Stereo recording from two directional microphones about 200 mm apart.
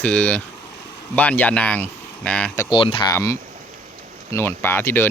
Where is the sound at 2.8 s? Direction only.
25° left (ahead or behind).